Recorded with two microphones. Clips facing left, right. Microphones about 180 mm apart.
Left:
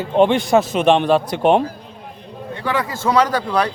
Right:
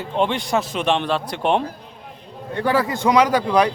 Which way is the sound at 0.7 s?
50° left (ahead or behind).